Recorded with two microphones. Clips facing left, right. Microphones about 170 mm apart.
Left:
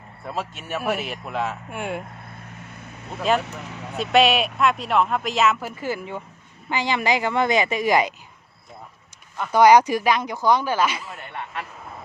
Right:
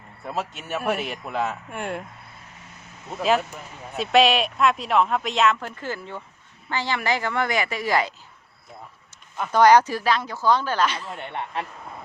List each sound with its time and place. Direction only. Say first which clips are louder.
0.3 s speech: even; centre (ahead or behind)
3.2 s speech: even; centre (ahead or behind); by 8.1 s 15° left (ahead or behind)
9.5 s speech: left 2 dB; 10° left (ahead or behind)
11.1 s speech: right 3 dB; 25° right (ahead or behind)